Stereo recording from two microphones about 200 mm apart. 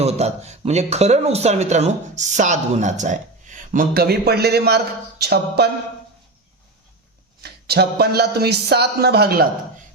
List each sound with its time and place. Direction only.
0.0 s speech: 30° right (ahead or behind); by 5.6 s 55° right (ahead or behind)
7.4 s speech: 55° right (ahead or behind)